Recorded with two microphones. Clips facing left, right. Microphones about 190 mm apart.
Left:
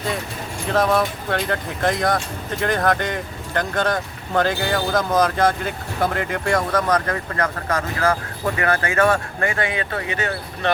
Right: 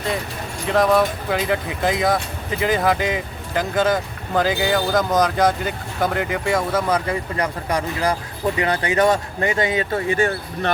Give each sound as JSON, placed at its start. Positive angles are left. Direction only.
{"t": 0.7, "sound": "speech", "side_deg": 0}